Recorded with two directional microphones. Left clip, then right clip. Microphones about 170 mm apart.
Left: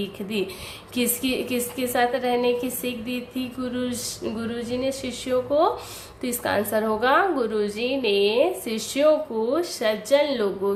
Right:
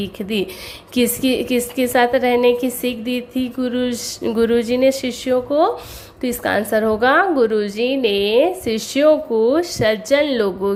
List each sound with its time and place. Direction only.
0.0 s a woman's voice: 40° right (ahead or behind)